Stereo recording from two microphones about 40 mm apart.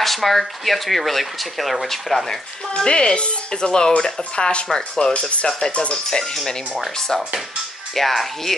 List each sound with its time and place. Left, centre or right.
0.0 s speech: centre
2.7 s speech: left
4.7 s speech: centre
5.6 s speech: left
6.0 s speech: centre
7.9 s speech: centre